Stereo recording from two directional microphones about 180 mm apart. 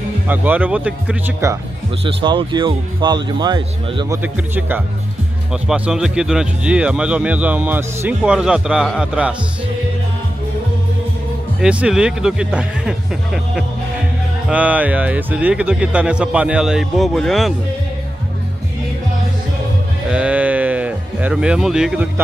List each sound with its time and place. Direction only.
0.3 s speech: 10° right (ahead or behind)
2.0 s speech: 25° right (ahead or behind)
4.2 s speech: 10° right (ahead or behind)
11.6 s speech: 5° right (ahead or behind)
20.1 s music: 5° right (ahead or behind)